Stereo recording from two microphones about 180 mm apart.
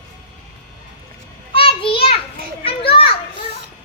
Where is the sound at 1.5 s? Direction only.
30° left (ahead or behind).